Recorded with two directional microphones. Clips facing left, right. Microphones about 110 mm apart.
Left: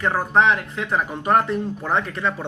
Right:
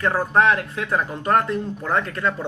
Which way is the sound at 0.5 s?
15° left (ahead or behind).